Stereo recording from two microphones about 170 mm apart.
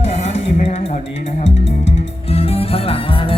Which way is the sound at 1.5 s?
90° left.